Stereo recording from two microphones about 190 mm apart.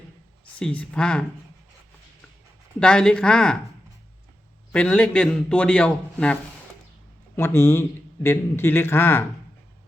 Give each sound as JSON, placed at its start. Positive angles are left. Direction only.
{"t": 0.6, "sound": "a man's voice", "side_deg": 5}
{"t": 2.8, "sound": "a man's voice", "side_deg": 5}
{"t": 4.7, "sound": "a man's voice", "side_deg": 5}